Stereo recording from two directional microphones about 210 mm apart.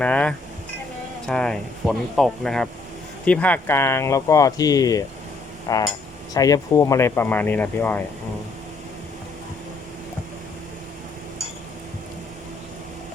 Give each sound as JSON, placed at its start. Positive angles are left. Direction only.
{"t": 0.0, "sound": "speech", "side_deg": 5}